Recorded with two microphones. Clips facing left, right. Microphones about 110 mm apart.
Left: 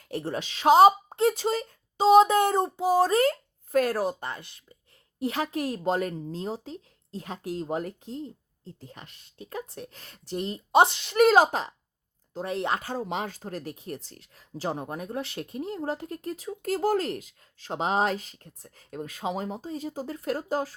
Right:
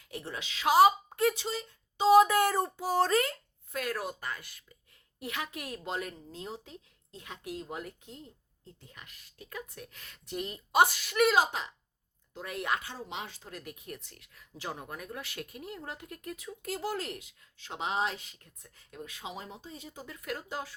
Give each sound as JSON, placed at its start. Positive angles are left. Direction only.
{"t": 0.1, "sound": "speech", "side_deg": 40}
{"t": 1.4, "sound": "speech", "side_deg": 45}
{"t": 2.0, "sound": "speech", "side_deg": 25}
{"t": 3.2, "sound": "speech", "side_deg": 40}
{"t": 11.2, "sound": "speech", "side_deg": 40}
{"t": 12.8, "sound": "speech", "side_deg": 40}